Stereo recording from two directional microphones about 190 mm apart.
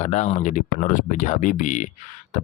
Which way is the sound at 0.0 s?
35° left (ahead or behind).